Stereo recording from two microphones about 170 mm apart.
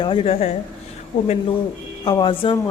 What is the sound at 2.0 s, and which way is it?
Speech, 25° left (ahead or behind).